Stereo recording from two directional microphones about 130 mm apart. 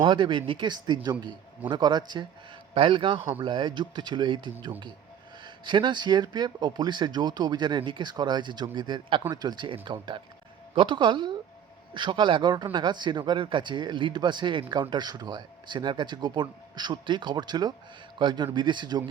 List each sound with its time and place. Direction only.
0.0 s a man's voice: 40° right (ahead or behind)